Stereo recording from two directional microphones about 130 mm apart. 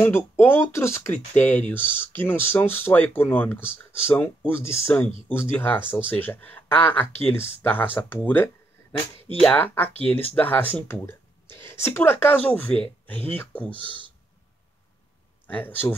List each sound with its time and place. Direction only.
0.0 s speech: 15° left (ahead or behind)
15.4 s speech: 15° left (ahead or behind)